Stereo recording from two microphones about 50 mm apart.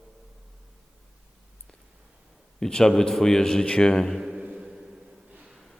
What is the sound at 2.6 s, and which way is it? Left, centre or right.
A man's voice, centre.